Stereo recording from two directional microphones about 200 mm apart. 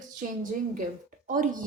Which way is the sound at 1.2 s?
40° right (ahead or behind).